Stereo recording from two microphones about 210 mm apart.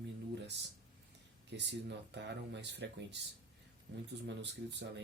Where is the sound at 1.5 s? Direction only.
55° right (ahead or behind).